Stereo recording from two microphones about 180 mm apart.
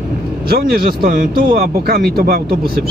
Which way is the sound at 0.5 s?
60° right (ahead or behind).